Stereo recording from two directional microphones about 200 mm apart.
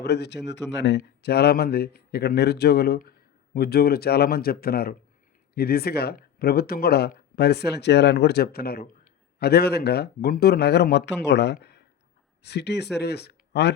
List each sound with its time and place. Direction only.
0.0 s speech: 55° left (ahead or behind)
11.5 s a sound: 55° left (ahead or behind)
12.4 s speech: 55° left (ahead or behind)